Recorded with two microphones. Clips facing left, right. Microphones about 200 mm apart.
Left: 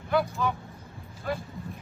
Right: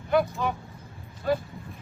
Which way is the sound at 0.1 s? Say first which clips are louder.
Right 2 dB; 20° right (ahead or behind).